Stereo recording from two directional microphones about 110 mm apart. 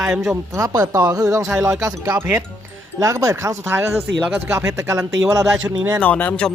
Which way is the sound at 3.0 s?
30° right (ahead or behind).